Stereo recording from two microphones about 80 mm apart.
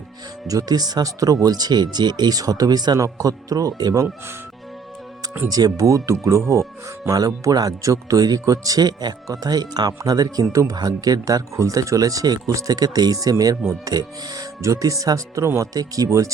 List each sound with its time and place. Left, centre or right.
0.4 s speech: right
5.5 s speech: right
10.4 s speech: right
15.7 s speech: right